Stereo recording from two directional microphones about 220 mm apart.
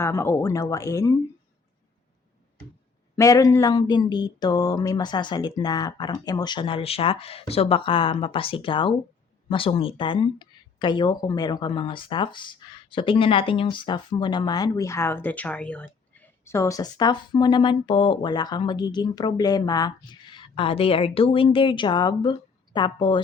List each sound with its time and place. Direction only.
0.0 s speech: 10° left (ahead or behind)
3.2 s speech: 15° left (ahead or behind)